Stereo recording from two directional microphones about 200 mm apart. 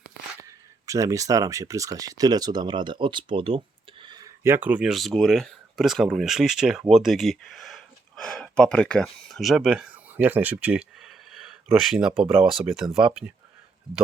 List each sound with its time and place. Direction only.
0.9 s speech: 15° right (ahead or behind)